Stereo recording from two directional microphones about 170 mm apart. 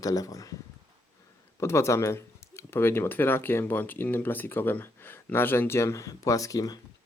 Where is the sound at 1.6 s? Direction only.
15° left (ahead or behind).